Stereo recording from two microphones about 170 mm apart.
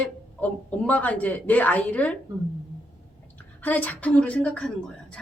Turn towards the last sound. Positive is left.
turn(degrees=5)  # may be behind; listen again after turning